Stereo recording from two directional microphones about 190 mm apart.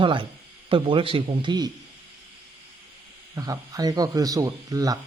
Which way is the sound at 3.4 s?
20° right (ahead or behind).